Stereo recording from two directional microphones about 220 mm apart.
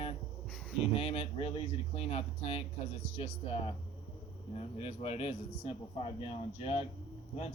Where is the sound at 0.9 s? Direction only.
25° left (ahead or behind).